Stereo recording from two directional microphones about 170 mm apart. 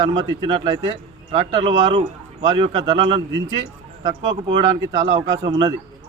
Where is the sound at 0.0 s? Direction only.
30° right (ahead or behind).